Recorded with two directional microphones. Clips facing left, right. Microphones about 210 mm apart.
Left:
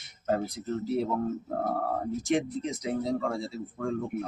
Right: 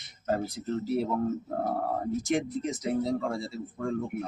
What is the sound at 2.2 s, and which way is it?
A man's voice, centre (ahead or behind).